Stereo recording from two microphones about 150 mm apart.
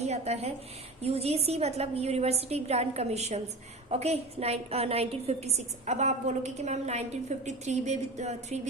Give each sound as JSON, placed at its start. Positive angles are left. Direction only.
{"t": 0.0, "sound": "a woman's voice", "side_deg": -45}